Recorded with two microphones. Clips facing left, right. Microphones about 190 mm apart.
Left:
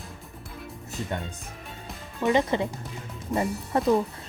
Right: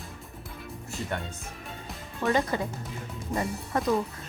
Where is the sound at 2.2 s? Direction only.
20° left (ahead or behind).